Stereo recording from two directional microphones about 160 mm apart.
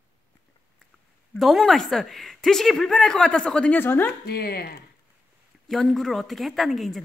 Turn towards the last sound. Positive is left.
turn(degrees=0)  # may be behind; listen again after turning